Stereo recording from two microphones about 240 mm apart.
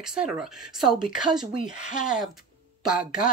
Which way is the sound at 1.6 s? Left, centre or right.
Left.